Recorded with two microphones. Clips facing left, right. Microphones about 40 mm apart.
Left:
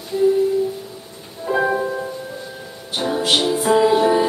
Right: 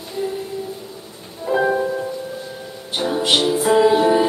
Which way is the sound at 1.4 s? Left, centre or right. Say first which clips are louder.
Right 1 dB; centre.